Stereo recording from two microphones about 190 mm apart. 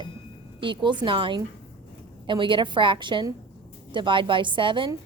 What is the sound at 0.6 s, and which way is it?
A woman's voice, 25° right (ahead or behind).